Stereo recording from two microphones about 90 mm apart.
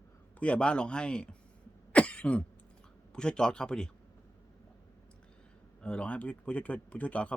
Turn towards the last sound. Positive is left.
turn(degrees=15)  # may be behind; listen again after turning